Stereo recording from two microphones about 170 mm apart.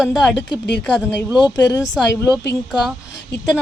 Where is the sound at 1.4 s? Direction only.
20° left (ahead or behind).